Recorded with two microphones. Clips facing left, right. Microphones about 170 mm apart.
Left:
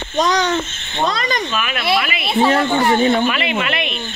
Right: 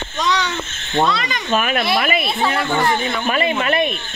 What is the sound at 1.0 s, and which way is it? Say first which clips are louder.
Speech: left 4 dB; 40° left (ahead or behind).